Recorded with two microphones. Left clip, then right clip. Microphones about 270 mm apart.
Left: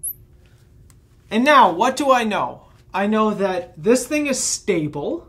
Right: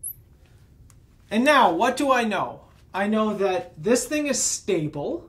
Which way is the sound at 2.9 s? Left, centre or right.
Left.